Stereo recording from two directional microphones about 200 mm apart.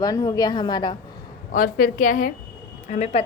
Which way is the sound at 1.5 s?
45° left (ahead or behind).